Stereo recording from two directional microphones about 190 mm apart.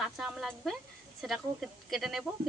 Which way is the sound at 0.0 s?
5° right (ahead or behind).